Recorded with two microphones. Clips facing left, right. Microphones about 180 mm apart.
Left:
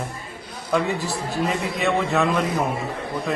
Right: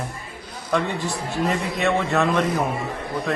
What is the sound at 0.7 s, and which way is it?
A man's voice, centre (ahead or behind).